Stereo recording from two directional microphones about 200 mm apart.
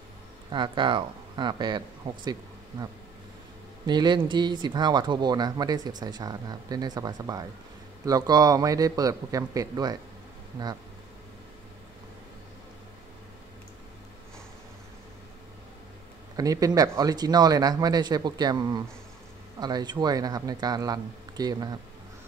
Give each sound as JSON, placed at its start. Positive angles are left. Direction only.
{"t": 0.5, "sound": "a man's voice", "side_deg": -25}
{"t": 3.8, "sound": "a man's voice", "side_deg": -20}
{"t": 16.3, "sound": "speech", "side_deg": -15}